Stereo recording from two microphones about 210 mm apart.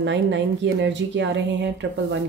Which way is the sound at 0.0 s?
60° right (ahead or behind).